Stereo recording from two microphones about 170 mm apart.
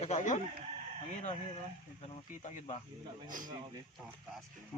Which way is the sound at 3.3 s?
50° right (ahead or behind).